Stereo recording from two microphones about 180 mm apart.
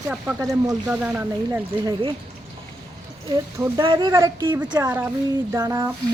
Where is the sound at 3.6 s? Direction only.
25° right (ahead or behind).